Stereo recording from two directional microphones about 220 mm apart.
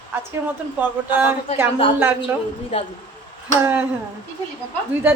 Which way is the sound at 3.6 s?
10° right (ahead or behind).